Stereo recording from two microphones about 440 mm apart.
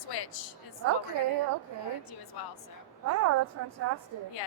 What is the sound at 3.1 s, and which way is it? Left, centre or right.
Speech, right.